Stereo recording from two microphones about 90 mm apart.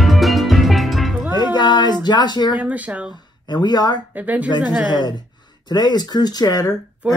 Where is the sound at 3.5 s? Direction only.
50° left (ahead or behind).